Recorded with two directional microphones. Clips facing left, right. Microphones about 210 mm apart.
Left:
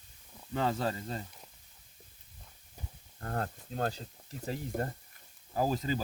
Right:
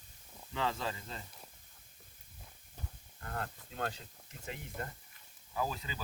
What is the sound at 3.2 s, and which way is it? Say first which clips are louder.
Speech: left 6 dB; 40° left (ahead or behind).